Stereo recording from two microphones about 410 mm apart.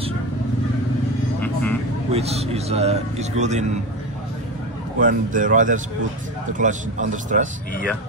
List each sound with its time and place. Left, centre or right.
1.4 s vehicle: centre
2.1 s a man's voice: centre
5.0 s a man's voice: centre